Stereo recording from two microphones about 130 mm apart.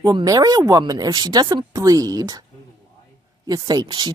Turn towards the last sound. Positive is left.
turn(degrees=-35)  # may be behind; listen again after turning